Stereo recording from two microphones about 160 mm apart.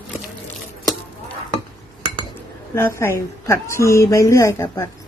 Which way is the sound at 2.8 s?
15° left (ahead or behind).